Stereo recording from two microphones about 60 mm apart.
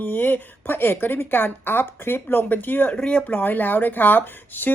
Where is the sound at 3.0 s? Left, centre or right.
Centre.